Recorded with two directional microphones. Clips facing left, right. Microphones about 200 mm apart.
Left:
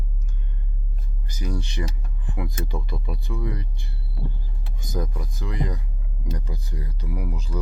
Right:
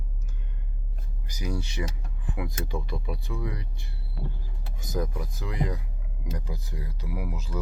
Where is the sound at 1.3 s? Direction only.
10° right (ahead or behind).